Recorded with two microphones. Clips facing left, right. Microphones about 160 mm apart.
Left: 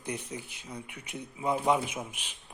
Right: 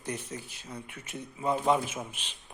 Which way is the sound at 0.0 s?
15° left (ahead or behind).